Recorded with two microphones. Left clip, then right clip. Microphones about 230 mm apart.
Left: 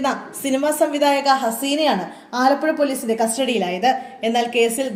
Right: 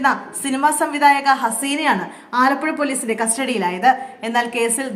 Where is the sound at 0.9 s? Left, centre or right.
Right.